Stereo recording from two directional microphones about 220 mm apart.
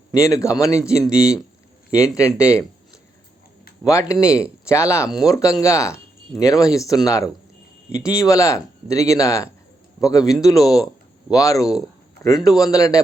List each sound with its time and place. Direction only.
0.1 s speech: 15° left (ahead or behind)
1.1 s speech: 5° right (ahead or behind)
1.9 s speech: 15° left (ahead or behind)
3.8 s speech: 15° left (ahead or behind)
4.2 s speech: 5° right (ahead or behind)
4.6 s speech: 15° left (ahead or behind)
7.9 s speech: 5° right (ahead or behind)
8.2 s speech: 15° left (ahead or behind)